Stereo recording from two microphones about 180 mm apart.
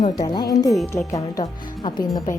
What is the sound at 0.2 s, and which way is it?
A woman's voice, 20° left (ahead or behind).